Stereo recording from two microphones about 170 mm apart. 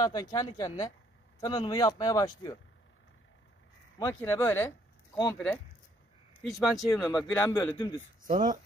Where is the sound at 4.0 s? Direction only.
15° left (ahead or behind).